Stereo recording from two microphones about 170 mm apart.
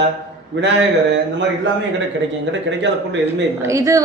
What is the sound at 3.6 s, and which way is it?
Speech, 15° right (ahead or behind).